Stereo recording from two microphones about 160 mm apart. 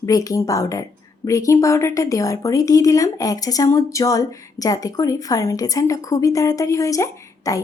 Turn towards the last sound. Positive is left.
turn(degrees=20)  # may be behind; listen again after turning